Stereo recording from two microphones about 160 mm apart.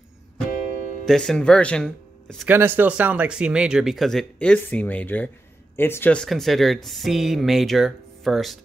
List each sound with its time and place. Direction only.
1.0 s speech: 5° left (ahead or behind)
2.4 s speech: 15° right (ahead or behind)